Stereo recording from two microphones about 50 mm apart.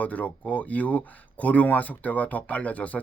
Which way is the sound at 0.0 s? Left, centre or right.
Left.